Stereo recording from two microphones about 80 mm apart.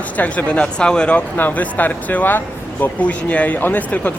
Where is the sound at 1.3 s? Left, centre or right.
Left.